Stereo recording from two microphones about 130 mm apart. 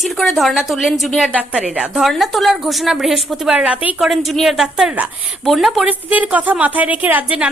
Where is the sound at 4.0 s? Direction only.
Centre (ahead or behind).